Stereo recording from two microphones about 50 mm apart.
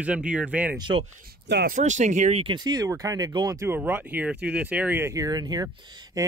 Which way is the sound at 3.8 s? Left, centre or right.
Right.